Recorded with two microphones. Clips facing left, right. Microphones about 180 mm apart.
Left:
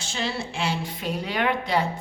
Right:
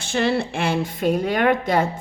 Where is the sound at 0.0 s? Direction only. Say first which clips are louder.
Right 9 dB; 60° right (ahead or behind).